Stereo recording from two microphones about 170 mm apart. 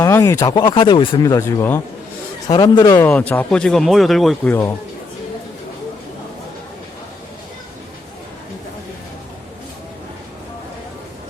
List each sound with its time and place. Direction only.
0.0 s speech: 20° left (ahead or behind); by 4.4 s centre (ahead or behind)
4.4 s speech: 10° left (ahead or behind)